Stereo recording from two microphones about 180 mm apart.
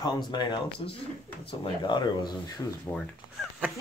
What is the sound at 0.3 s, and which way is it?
Speech, 25° left (ahead or behind).